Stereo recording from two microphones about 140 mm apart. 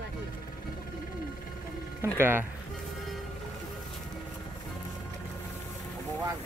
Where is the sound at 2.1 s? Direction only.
15° right (ahead or behind).